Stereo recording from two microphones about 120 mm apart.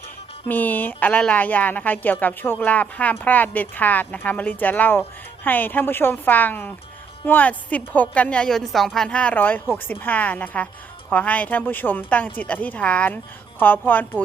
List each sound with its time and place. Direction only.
0.4 s a woman's voice: 15° left (ahead or behind)